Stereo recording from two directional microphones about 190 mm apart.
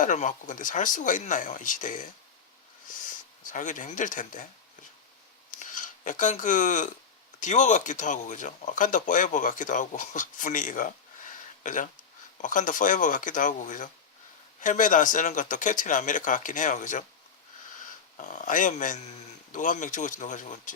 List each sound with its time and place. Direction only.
0.0 s speech: 40° left (ahead or behind)
2.8 s a sound: 45° left (ahead or behind)
7.4 s speech: 40° left (ahead or behind)
18.2 s speech: 40° left (ahead or behind)